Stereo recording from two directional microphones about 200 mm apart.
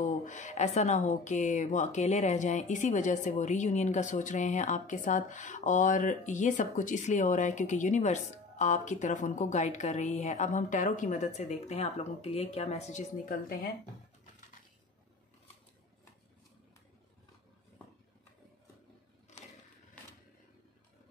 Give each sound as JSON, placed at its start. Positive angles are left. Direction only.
{"t": 0.0, "sound": "a woman's voice", "side_deg": 40}